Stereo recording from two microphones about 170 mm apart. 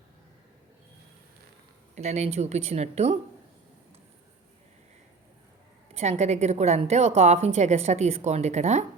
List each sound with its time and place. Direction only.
2.0 s a woman's voice: 40° right (ahead or behind)
5.9 s a woman's voice: 40° right (ahead or behind)